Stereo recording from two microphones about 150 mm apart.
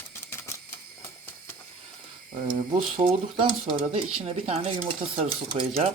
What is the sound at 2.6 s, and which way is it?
Speech, 35° right (ahead or behind).